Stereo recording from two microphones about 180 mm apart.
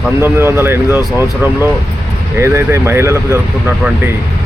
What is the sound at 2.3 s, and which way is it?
Speech, 15° right (ahead or behind).